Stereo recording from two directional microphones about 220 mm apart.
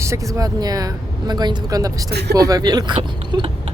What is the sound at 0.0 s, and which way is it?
Speech, 15° right (ahead or behind).